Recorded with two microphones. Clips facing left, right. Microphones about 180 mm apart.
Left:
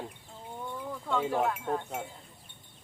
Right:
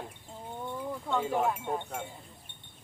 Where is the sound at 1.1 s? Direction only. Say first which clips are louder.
Even; 10° right (ahead or behind).